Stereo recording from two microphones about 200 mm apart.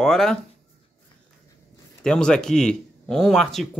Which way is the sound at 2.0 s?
5° left (ahead or behind).